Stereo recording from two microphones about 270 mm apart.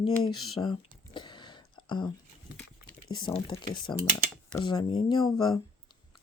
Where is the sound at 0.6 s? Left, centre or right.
Centre.